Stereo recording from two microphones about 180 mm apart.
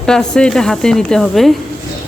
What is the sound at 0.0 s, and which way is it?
Speech, 5° left (ahead or behind).